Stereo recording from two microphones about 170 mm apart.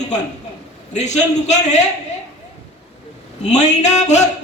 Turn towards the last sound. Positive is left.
turn(degrees=45)  # may be behind; listen again after turning